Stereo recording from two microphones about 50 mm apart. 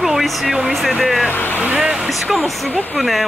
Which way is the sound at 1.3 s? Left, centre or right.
Left.